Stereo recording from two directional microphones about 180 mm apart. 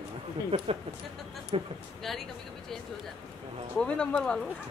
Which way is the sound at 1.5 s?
35° right (ahead or behind).